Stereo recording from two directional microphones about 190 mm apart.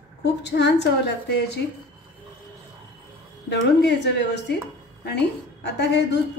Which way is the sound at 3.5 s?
65° left (ahead or behind).